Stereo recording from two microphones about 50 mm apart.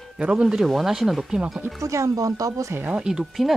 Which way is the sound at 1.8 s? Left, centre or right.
Right.